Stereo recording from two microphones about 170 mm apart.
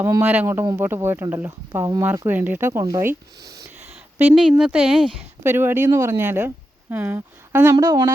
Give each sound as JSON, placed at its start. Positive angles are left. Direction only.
{"t": 0.0, "sound": "speech", "side_deg": -15}
{"t": 4.2, "sound": "speech", "side_deg": -5}